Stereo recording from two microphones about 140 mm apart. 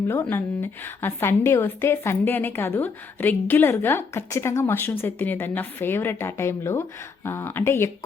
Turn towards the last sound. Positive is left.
turn(degrees=15)  # may be behind; listen again after turning